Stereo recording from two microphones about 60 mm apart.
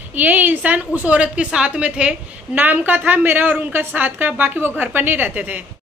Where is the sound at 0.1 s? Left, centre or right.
Right.